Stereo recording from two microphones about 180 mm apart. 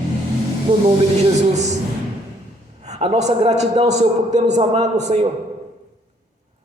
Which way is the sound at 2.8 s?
35° right (ahead or behind).